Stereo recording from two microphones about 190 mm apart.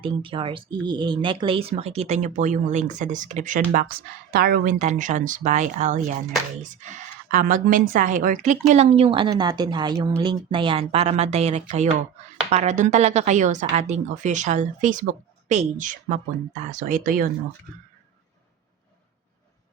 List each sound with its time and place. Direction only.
0.0 s speech: 25° right (ahead or behind); by 17.2 s 45° right (ahead or behind)